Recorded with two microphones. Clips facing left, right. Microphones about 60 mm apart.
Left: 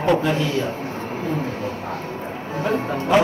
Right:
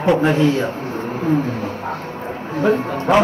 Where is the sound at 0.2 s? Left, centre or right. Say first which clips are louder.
Right 6 dB; right.